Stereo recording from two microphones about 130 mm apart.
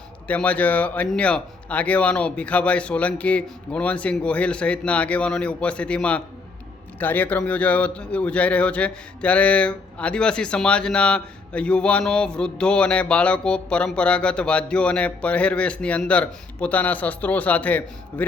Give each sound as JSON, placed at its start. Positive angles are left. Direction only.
{"t": 0.3, "sound": "a man's voice", "side_deg": 10}